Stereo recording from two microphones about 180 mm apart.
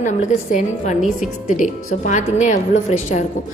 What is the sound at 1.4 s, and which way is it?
A woman's voice, 45° left (ahead or behind).